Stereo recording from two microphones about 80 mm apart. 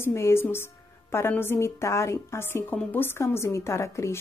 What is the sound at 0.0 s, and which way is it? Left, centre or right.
A woman's voice, left.